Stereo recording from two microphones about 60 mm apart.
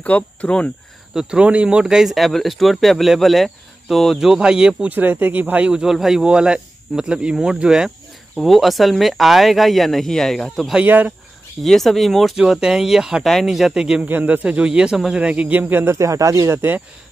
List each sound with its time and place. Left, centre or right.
0.0 s speech: left
1.1 s speech: centre
4.8 s speech: right
5.7 s speech: centre
8.4 s speech: centre
10.8 s speech: right
11.6 s speech: centre
12.4 s speech: centre
13.2 s speech: centre
14.0 s a man's voice: right
14.4 s speech: centre
15.8 s speech: right
16.5 s a man's voice: right